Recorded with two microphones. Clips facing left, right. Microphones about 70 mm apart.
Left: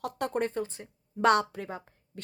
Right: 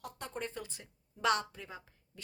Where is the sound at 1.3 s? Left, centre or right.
Left.